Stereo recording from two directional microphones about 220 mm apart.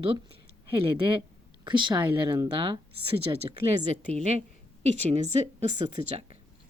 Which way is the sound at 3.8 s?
30° right (ahead or behind).